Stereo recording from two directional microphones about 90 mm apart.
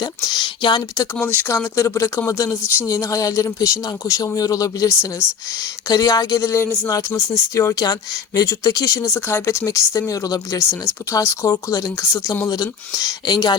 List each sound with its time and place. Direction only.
0.0 s speech: 60° left (ahead or behind)
1.2 s speech: 20° left (ahead or behind)
1.5 s speech: 35° left (ahead or behind)
8.4 s speech: 45° left (ahead or behind)
9.1 s speech: 30° left (ahead or behind)
12.9 s speech: 45° left (ahead or behind)